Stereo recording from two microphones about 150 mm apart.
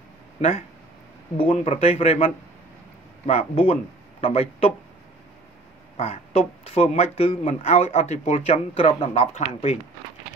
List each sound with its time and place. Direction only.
0.4 s speech: 40° left (ahead or behind)
5.9 s speech: 40° left (ahead or behind)